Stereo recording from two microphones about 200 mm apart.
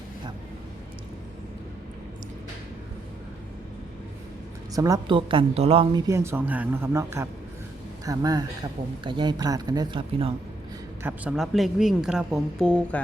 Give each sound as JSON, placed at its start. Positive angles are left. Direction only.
{"t": 4.7, "sound": "a woman's voice", "side_deg": -15}
{"t": 11.0, "sound": "a woman's voice", "side_deg": -5}